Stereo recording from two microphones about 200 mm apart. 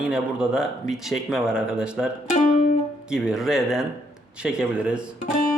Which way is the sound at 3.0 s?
5° right (ahead or behind).